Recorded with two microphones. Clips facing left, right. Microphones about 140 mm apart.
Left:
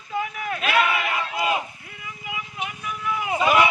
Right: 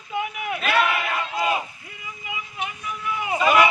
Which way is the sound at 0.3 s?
10° right (ahead or behind).